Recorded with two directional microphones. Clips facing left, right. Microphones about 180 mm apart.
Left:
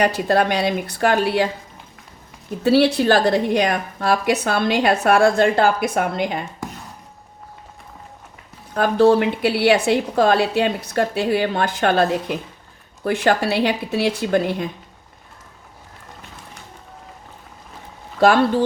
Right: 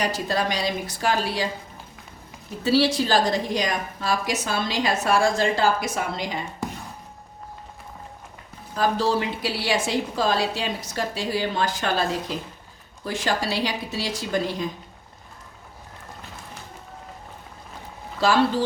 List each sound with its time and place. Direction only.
0.0 s a woman's voice: 60° left (ahead or behind)
2.6 s a woman's voice: 60° left (ahead or behind)
8.7 s a woman's voice: 60° left (ahead or behind)
18.2 s a woman's voice: 55° left (ahead or behind)